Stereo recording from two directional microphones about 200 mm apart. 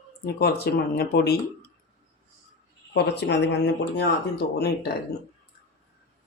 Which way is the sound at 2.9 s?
55° left (ahead or behind).